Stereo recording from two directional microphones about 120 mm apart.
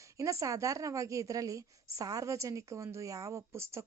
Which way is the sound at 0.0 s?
25° right (ahead or behind).